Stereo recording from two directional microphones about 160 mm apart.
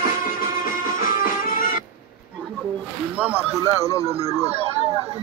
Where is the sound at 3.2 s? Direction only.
10° right (ahead or behind).